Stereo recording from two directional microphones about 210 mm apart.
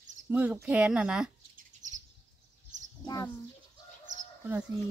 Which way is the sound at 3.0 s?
15° left (ahead or behind).